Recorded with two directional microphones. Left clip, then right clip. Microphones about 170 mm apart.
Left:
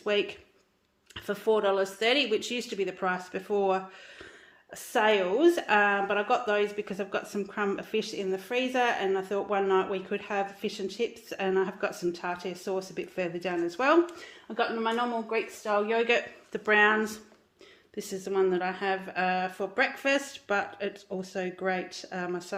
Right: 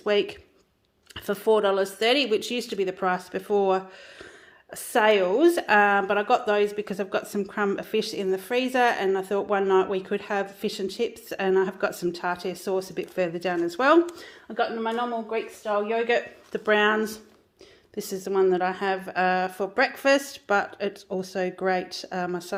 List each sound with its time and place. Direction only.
0.0 s a woman's voice: 35° right (ahead or behind)
14.4 s speech: 15° right (ahead or behind)
16.5 s a woman's voice: 30° right (ahead or behind)